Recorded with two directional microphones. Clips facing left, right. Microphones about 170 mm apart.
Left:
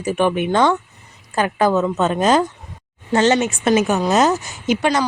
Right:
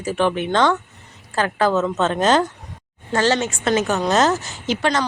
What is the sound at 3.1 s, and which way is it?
A woman's voice, 20° left (ahead or behind).